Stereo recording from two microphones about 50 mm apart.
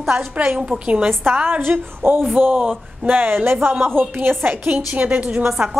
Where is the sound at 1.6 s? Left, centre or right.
Right.